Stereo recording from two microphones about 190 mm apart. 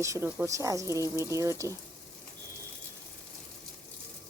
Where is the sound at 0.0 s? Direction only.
15° right (ahead or behind).